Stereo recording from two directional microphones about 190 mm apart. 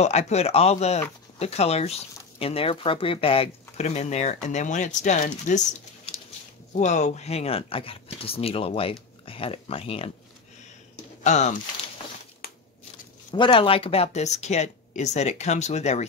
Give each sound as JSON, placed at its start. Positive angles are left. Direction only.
{"t": 0.0, "sound": "speech", "side_deg": 35}
{"t": 11.2, "sound": "speech", "side_deg": 35}
{"t": 13.3, "sound": "speech", "side_deg": 25}